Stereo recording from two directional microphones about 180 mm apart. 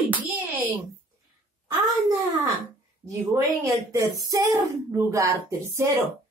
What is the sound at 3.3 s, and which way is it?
A woman's voice, 15° right (ahead or behind).